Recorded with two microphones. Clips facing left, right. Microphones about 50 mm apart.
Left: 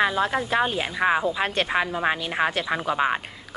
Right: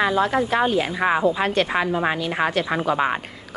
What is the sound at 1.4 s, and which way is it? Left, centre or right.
Speech, left.